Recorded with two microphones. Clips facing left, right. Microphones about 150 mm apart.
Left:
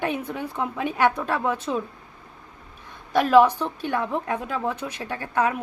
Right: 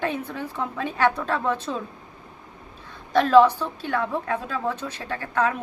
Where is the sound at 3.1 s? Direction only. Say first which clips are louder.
Right 1 dB; 10° left (ahead or behind).